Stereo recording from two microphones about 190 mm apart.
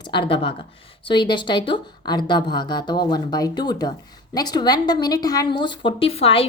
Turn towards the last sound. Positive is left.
turn(degrees=30)  # may be behind; listen again after turning